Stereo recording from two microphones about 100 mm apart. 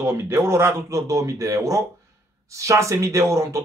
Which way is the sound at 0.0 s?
25° right (ahead or behind).